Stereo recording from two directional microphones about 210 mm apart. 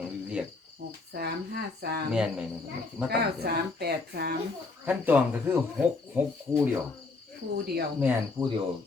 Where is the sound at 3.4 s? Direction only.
50° right (ahead or behind).